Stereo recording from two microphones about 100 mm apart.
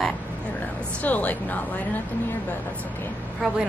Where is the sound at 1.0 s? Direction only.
15° left (ahead or behind).